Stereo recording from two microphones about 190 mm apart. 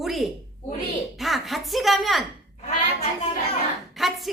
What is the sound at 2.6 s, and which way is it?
Speech, 35° left (ahead or behind).